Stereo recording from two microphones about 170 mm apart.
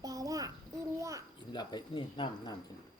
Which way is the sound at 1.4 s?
25° left (ahead or behind).